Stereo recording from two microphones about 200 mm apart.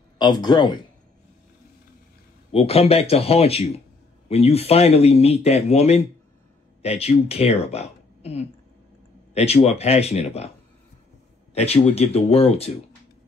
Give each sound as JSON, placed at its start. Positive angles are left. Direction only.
{"t": 0.2, "sound": "speech", "side_deg": 20}
{"t": 2.5, "sound": "a woman's voice", "side_deg": 30}
{"t": 11.5, "sound": "speech", "side_deg": 30}